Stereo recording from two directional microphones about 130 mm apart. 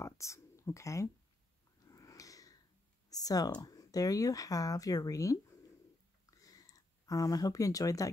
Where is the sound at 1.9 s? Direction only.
25° left (ahead or behind).